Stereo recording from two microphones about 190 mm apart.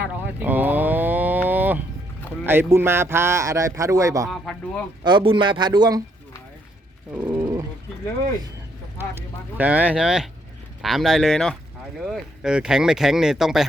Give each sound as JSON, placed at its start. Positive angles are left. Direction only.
{"t": 0.0, "sound": "a sound", "side_deg": -10}
{"t": 2.5, "sound": "a man's voice", "side_deg": -10}
{"t": 4.3, "sound": "speech", "side_deg": 5}
{"t": 5.0, "sound": "a man's voice", "side_deg": -25}
{"t": 7.1, "sound": "wild animals", "side_deg": -10}
{"t": 9.0, "sound": "a man's voice", "side_deg": -10}